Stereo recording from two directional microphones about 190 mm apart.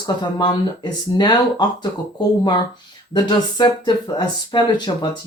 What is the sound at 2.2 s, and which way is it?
Speech, 20° left (ahead or behind).